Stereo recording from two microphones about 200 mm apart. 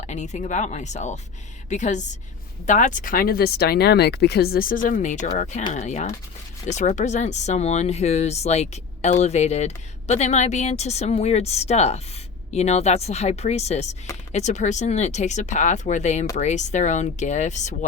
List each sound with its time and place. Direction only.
0.1 s speech: 35° left (ahead or behind)